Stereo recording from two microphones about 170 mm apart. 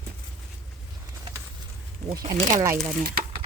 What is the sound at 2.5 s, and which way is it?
Speech, 20° right (ahead or behind).